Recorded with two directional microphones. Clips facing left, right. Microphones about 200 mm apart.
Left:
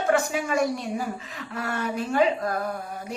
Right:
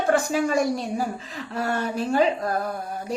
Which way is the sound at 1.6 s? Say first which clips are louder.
Right 3 dB; 30° right (ahead or behind).